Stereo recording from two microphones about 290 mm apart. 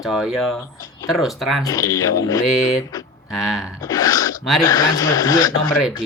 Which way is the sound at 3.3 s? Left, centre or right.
Centre.